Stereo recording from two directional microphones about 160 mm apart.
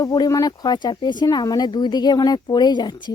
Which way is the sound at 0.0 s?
25° left (ahead or behind).